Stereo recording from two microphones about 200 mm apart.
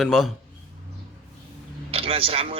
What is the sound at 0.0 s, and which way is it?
Speech, centre (ahead or behind).